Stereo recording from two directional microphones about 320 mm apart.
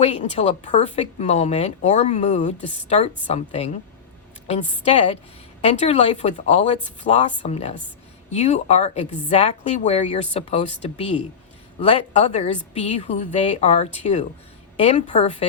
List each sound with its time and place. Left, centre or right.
0.0 s a woman's voice: left